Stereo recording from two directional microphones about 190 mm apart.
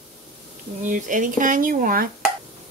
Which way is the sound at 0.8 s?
40° right (ahead or behind).